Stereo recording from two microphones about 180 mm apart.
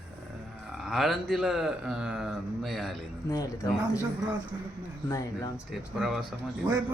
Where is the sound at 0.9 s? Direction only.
Centre (ahead or behind).